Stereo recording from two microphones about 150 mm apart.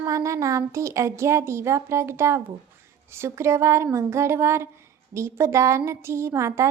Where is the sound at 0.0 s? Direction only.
20° right (ahead or behind).